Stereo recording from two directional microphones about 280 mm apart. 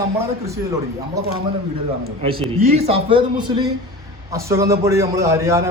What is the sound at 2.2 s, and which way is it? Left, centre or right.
A man's voice, centre.